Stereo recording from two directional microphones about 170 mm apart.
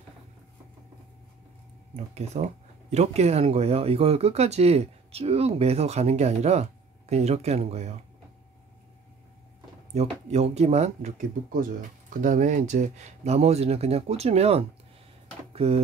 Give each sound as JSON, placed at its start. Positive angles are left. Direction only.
{"t": 2.1, "sound": "speech", "side_deg": -40}
{"t": 9.9, "sound": "speech", "side_deg": -40}